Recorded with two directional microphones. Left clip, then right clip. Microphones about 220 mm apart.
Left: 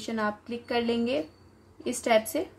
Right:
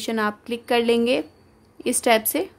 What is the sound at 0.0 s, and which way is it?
A woman's voice, 45° right (ahead or behind).